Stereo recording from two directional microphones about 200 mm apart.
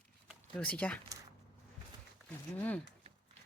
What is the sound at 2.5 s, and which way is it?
Speech, 10° left (ahead or behind).